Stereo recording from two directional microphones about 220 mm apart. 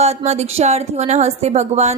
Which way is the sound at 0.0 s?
30° right (ahead or behind).